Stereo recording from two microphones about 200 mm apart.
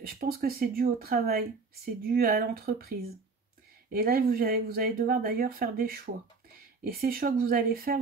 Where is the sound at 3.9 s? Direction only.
50° right (ahead or behind).